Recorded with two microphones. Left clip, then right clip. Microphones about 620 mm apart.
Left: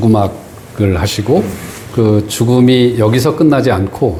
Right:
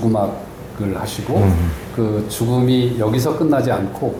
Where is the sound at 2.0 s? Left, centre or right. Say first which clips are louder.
Left 8 dB; left.